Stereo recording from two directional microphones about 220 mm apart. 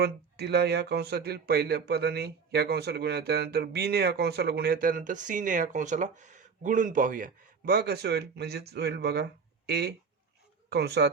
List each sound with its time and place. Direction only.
0.0 s speech: 50° right (ahead or behind)